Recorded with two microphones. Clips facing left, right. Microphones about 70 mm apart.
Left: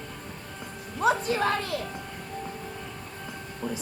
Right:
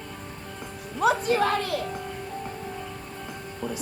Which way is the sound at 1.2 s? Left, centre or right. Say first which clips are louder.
Right 3 dB; right.